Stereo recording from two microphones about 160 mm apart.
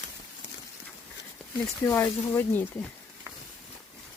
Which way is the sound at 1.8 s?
20° left (ahead or behind).